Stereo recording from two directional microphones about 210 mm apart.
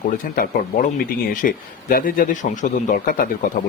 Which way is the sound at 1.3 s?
40° left (ahead or behind).